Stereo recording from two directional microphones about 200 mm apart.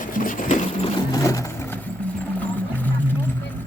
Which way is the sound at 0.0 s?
40° left (ahead or behind).